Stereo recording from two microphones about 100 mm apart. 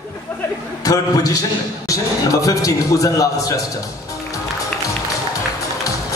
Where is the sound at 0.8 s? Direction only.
35° left (ahead or behind).